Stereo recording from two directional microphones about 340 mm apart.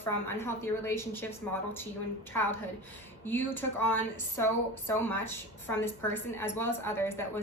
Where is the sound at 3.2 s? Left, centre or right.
Centre.